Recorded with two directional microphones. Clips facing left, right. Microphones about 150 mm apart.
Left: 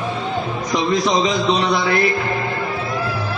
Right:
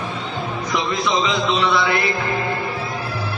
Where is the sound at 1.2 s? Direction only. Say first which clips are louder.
Left 2 dB; 40° left (ahead or behind).